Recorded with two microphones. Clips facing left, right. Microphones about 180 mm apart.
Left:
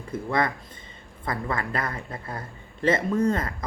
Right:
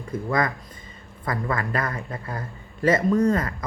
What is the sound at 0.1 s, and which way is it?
Speech, 30° left (ahead or behind).